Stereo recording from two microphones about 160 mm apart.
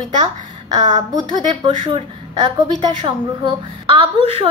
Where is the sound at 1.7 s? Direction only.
40° right (ahead or behind).